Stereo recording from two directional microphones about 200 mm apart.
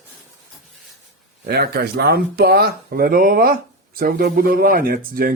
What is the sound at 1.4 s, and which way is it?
Speech, 50° right (ahead or behind).